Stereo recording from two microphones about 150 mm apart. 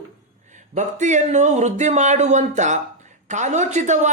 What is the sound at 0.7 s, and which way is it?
Speech, 55° right (ahead or behind).